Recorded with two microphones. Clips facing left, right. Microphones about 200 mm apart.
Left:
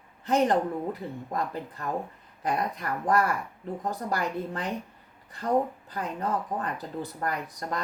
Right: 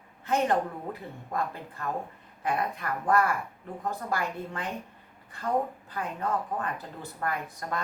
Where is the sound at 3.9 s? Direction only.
35° left (ahead or behind).